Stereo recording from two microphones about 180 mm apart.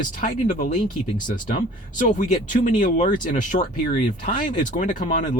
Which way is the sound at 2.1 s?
45° left (ahead or behind).